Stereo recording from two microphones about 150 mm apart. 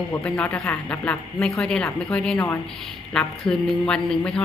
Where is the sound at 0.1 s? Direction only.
10° left (ahead or behind).